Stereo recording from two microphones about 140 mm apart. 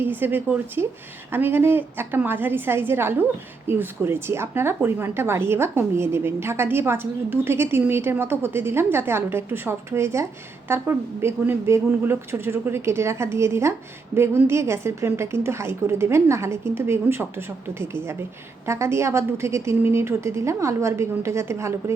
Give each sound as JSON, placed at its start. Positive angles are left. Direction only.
{"t": 0.0, "sound": "a woman's voice", "side_deg": -15}